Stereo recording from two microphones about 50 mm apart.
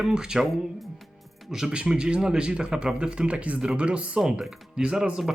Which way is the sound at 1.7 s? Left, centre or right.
Centre.